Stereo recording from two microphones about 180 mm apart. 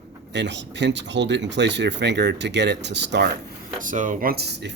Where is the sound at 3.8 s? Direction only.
45° right (ahead or behind); by 4.7 s 65° right (ahead or behind).